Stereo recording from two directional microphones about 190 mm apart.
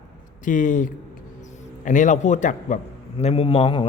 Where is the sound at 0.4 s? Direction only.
40° left (ahead or behind).